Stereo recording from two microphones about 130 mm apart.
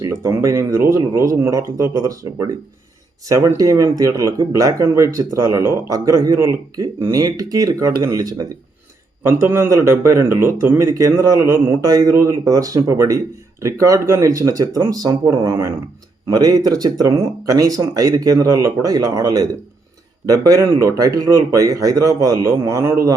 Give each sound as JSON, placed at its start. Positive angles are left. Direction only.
{"t": 0.0, "sound": "a man's voice", "side_deg": -25}